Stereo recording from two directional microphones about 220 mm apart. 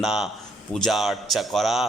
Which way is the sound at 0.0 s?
Centre (ahead or behind).